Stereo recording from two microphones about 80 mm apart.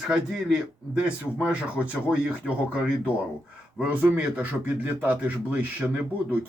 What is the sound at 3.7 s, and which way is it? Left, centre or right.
Speech, right.